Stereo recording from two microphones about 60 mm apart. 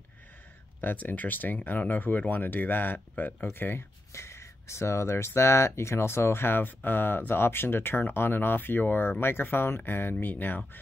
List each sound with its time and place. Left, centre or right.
0.7 s speech: left
4.1 s speech: left